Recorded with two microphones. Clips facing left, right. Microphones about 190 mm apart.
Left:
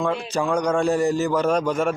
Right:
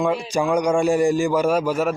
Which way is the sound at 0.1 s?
10° right (ahead or behind).